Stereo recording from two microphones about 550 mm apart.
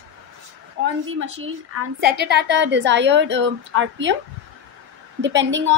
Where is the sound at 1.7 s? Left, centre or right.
Centre.